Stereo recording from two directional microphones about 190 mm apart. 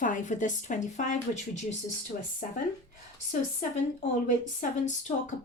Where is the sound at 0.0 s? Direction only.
45° left (ahead or behind).